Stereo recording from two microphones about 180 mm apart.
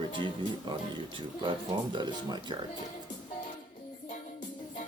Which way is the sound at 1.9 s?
25° right (ahead or behind).